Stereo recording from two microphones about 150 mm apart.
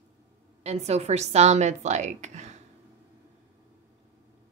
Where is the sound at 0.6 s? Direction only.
45° right (ahead or behind).